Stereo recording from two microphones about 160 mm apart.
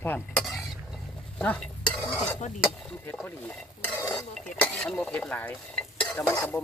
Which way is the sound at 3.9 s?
15° left (ahead or behind).